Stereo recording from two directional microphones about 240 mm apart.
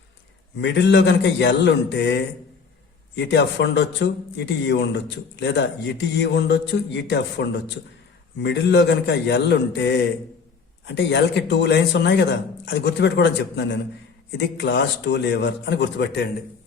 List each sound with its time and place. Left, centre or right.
0.6 s speech: left
3.2 s speech: left